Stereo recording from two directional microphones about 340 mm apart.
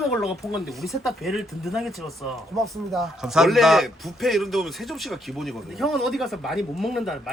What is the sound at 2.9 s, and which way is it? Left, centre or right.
A man's voice, centre.